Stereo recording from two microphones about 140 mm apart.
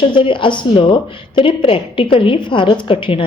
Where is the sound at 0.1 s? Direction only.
35° left (ahead or behind).